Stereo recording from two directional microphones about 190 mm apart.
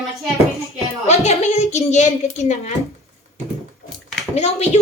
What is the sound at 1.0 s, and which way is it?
Speech, 35° left (ahead or behind).